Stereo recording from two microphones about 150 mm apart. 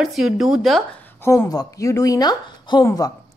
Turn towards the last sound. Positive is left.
turn(degrees=25)  # may be behind; listen again after turning